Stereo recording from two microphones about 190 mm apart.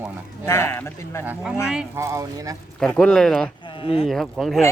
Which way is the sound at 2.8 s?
5° left (ahead or behind).